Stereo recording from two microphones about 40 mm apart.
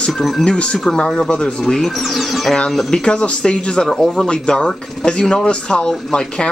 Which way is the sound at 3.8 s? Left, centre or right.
Centre.